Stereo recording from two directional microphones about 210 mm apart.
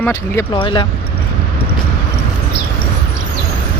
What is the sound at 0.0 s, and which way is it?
Speech, 15° left (ahead or behind).